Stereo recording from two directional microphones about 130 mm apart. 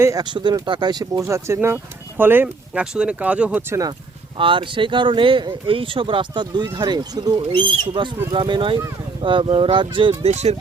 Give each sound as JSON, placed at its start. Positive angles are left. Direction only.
{"t": 0.0, "sound": "speech", "side_deg": -25}
{"t": 4.4, "sound": "speech", "side_deg": -40}
{"t": 10.2, "sound": "speech", "side_deg": -55}